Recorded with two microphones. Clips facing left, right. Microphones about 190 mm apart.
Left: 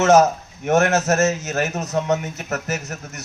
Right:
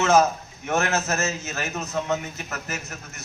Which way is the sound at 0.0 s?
45° left (ahead or behind).